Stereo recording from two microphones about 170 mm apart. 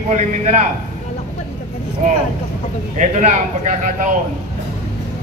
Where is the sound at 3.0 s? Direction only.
45° right (ahead or behind).